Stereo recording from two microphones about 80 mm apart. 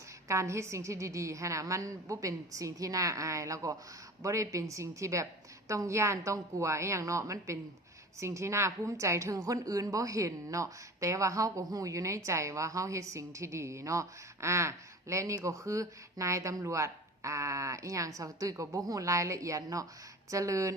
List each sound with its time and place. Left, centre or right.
0.3 s a woman's voice: right